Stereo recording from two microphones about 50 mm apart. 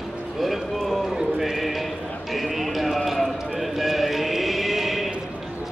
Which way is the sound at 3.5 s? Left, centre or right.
Centre.